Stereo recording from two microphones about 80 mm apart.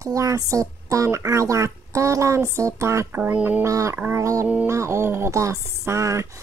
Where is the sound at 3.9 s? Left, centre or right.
Right.